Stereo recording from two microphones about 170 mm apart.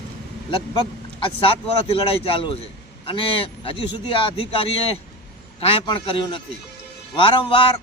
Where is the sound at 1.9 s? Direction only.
35° left (ahead or behind).